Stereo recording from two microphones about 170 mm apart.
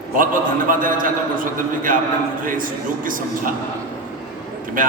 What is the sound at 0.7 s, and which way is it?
Speech, 55° right (ahead or behind).